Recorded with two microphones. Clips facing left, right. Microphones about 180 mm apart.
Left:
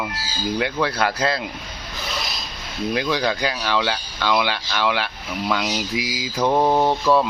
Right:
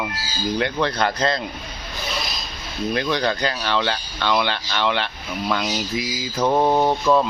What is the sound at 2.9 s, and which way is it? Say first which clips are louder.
Speech: even; 10° left (ahead or behind).